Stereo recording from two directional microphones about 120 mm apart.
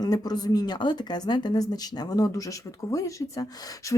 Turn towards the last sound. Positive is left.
turn(degrees=25)  # may be behind; listen again after turning